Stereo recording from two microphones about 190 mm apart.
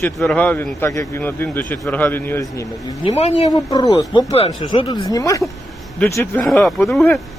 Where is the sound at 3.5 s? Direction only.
20° left (ahead or behind).